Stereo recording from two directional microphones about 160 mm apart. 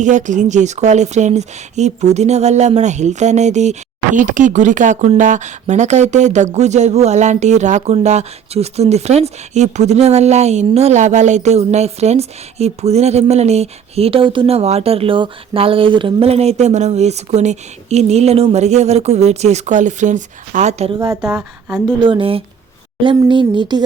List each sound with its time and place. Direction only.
0.0 s speech: 50° right (ahead or behind)
21.0 s speech: 15° right (ahead or behind)
22.0 s speech: 35° right (ahead or behind)